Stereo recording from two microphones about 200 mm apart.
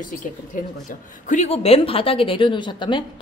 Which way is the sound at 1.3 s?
35° left (ahead or behind).